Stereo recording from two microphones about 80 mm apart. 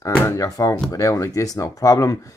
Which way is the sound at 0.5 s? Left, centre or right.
Left.